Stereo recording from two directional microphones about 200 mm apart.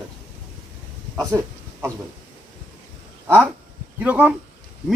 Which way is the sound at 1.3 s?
15° right (ahead or behind).